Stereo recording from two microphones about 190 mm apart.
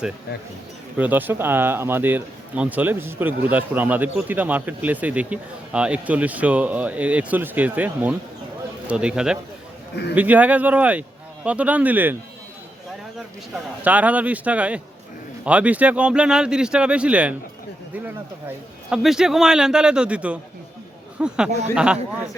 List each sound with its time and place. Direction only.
0.9 s a man's voice: 10° right (ahead or behind)
9.9 s a man's voice: 60° left (ahead or behind)
10.2 s speech: 10° right (ahead or behind)
13.8 s a man's voice: 10° right (ahead or behind)